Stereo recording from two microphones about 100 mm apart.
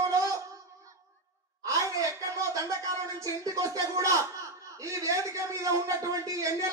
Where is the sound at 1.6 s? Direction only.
35° right (ahead or behind).